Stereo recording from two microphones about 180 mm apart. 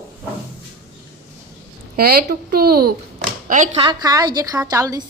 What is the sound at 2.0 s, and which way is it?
Speech, 60° right (ahead or behind).